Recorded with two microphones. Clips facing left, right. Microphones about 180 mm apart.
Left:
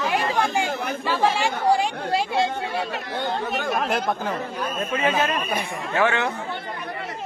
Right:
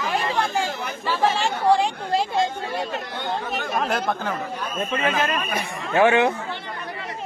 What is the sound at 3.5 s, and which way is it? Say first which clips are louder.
Speech: right 1 dB; centre (ahead or behind).